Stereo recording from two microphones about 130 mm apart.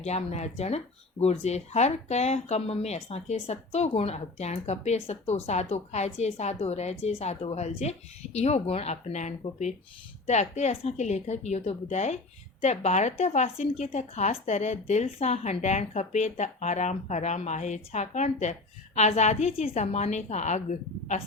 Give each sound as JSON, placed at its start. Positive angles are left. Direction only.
{"t": 0.0, "sound": "speech", "side_deg": 55}